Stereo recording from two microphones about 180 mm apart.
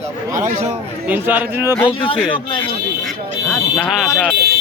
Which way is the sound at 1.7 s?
30° left (ahead or behind).